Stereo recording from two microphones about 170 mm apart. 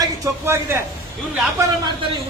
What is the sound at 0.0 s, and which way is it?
Speech, 15° right (ahead or behind).